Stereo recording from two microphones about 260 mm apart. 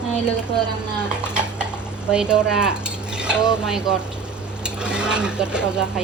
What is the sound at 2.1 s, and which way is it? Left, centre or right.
Cutlery, centre.